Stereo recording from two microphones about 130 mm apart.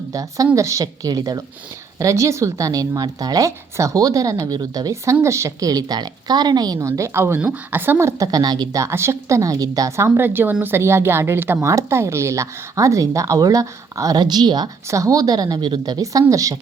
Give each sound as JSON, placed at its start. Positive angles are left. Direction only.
{"t": 0.1, "sound": "speech", "side_deg": -25}